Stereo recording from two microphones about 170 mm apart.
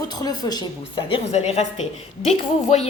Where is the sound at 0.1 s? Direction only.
20° left (ahead or behind).